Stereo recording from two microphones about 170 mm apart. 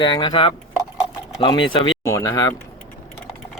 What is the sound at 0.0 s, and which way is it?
Speech, 25° left (ahead or behind).